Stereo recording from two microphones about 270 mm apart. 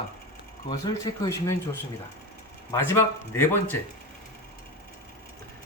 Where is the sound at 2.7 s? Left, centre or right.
Centre.